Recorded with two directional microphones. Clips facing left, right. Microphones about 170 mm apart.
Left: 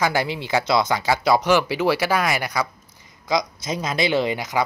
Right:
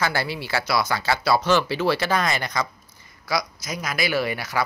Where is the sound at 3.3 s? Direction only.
25° left (ahead or behind).